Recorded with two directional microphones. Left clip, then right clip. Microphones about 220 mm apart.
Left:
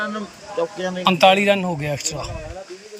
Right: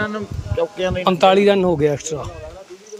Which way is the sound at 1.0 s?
15° right (ahead or behind).